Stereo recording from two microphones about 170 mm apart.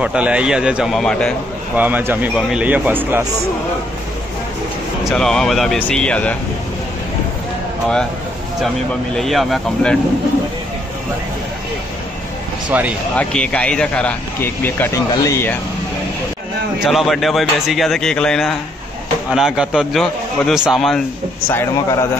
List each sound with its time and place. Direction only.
0.0 s speech: 5° right (ahead or behind)
1.8 s a man's voice: 10° right (ahead or behind)
5.0 s speech: 5° left (ahead or behind)
9.1 s speech: centre (ahead or behind)
12.6 s speech: 10° right (ahead or behind)
13.1 s speech: 5° left (ahead or behind)
16.8 s speech: centre (ahead or behind)
21.5 s a man's voice: 15° left (ahead or behind)